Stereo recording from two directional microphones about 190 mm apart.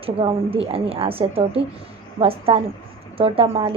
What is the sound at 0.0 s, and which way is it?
A woman's voice, 30° right (ahead or behind).